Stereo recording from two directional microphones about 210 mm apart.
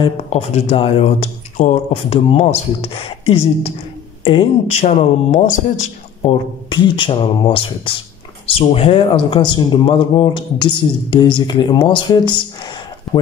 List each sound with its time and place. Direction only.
0.0 s speech: 30° left (ahead or behind)